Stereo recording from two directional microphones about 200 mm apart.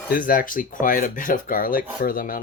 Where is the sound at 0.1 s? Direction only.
45° left (ahead or behind).